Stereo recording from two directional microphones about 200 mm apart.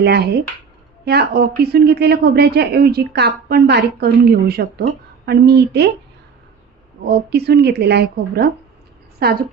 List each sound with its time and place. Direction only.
0.0 s a woman's voice: 55° right (ahead or behind)
7.1 s a woman's voice: 55° right (ahead or behind)